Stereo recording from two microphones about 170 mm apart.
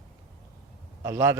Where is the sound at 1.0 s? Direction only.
15° right (ahead or behind).